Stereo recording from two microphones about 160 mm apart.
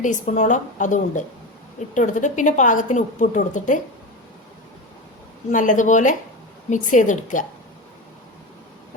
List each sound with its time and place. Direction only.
0.0 s a woman's voice: 50° left (ahead or behind)
5.5 s a woman's voice: 55° left (ahead or behind)